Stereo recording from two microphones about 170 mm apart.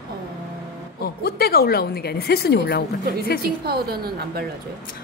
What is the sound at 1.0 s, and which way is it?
Speech, 65° left (ahead or behind).